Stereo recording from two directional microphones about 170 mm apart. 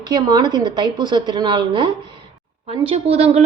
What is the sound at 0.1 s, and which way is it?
A woman's voice, 25° right (ahead or behind).